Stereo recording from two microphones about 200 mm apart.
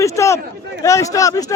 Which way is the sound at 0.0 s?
15° left (ahead or behind).